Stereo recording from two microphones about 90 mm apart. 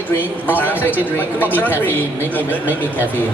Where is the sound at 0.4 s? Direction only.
20° left (ahead or behind).